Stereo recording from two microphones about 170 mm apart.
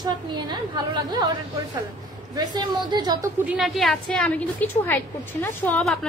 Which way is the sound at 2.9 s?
25° right (ahead or behind).